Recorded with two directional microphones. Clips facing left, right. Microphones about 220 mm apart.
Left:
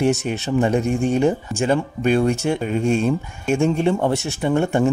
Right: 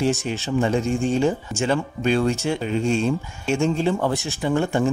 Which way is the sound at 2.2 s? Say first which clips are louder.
Left 2 dB; 50° left (ahead or behind).